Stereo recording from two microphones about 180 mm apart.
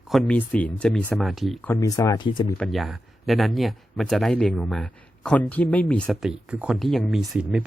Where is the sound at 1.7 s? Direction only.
15° left (ahead or behind).